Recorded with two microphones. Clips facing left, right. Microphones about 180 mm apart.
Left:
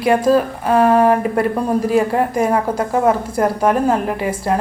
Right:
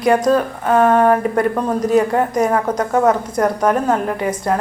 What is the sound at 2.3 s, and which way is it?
Speech, 25° left (ahead or behind).